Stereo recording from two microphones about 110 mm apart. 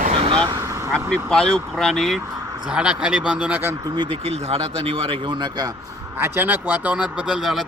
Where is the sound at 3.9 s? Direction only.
45° right (ahead or behind).